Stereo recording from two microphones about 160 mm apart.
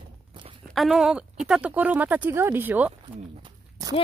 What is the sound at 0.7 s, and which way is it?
Speech, centre (ahead or behind).